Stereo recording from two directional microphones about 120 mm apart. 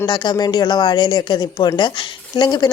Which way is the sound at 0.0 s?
40° left (ahead or behind).